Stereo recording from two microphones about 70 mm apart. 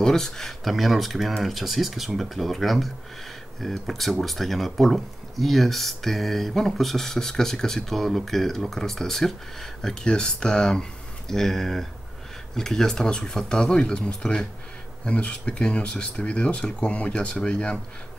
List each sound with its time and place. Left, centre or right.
0.0 s speech: centre